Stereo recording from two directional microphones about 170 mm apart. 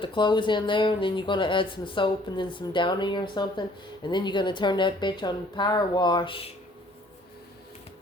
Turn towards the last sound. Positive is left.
turn(degrees=30)  # may be behind; listen again after turning